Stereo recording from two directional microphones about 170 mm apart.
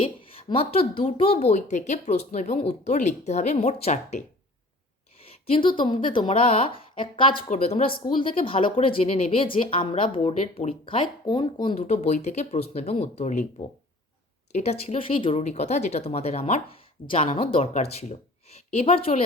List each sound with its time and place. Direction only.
0.0 s a woman's voice: 30° left (ahead or behind)
5.5 s a woman's voice: 30° left (ahead or behind)
14.5 s a woman's voice: 40° left (ahead or behind)